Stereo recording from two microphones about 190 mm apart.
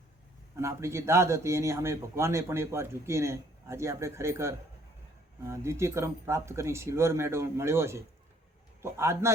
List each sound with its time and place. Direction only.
0.5 s a man's voice: 15° right (ahead or behind)